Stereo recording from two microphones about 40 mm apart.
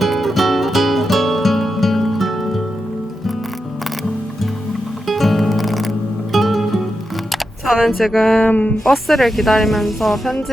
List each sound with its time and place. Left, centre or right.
0.0 s music: centre
5.0 s music: centre
7.9 s speech: centre
8.4 s speech: left
8.9 s speech: centre